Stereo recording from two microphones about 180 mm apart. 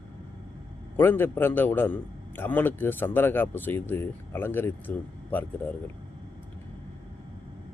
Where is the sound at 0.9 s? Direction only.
10° left (ahead or behind).